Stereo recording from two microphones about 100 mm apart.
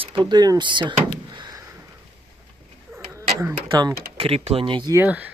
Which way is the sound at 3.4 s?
35° right (ahead or behind).